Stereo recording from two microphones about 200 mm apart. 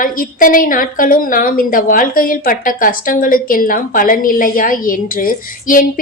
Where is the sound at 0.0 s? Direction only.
45° left (ahead or behind).